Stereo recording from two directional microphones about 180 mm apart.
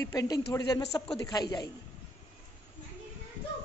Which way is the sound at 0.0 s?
15° left (ahead or behind).